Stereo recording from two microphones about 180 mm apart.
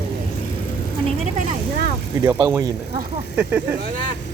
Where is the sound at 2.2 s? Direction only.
15° right (ahead or behind).